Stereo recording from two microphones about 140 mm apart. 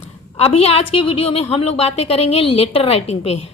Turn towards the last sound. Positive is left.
turn(degrees=45)  # may be behind; listen again after turning